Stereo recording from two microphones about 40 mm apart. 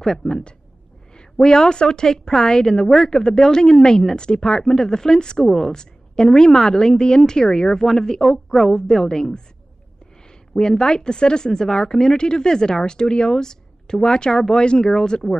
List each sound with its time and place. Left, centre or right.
0.0 s a woman's voice: centre
1.1 s a woman's voice: centre
10.5 s speech: centre